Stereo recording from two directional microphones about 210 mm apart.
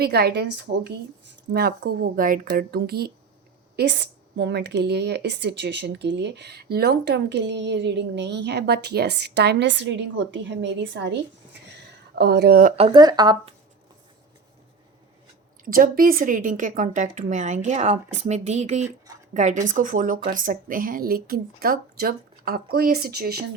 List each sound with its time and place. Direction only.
0.0 s speech: 50° right (ahead or behind)
12.7 s speech: 25° right (ahead or behind)
15.6 s a woman's voice: 45° right (ahead or behind)
18.9 s a sound: 15° right (ahead or behind)
19.3 s speech: 35° right (ahead or behind)